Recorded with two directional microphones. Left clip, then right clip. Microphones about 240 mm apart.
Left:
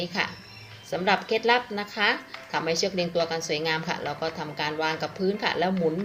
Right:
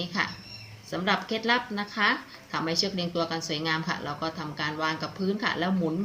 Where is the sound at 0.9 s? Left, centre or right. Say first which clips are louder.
Left 3 dB; centre.